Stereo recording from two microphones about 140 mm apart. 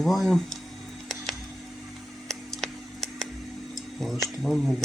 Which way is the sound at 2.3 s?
Centre (ahead or behind).